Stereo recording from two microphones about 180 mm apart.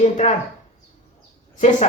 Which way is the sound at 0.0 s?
40° left (ahead or behind).